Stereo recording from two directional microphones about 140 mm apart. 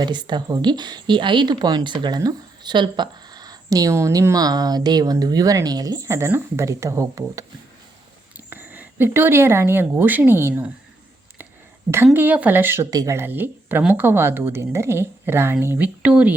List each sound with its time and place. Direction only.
0.0 s speech: 30° right (ahead or behind); by 10.7 s 15° right (ahead or behind)
12.1 s speech: 10° right (ahead or behind)